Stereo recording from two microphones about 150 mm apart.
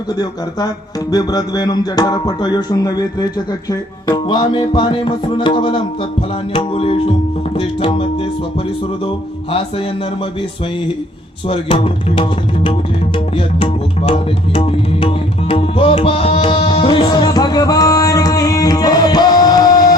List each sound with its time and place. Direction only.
1.1 s speech: 25° left (ahead or behind)
6.5 s music: 40° left (ahead or behind)
11.4 s music: 40° left (ahead or behind)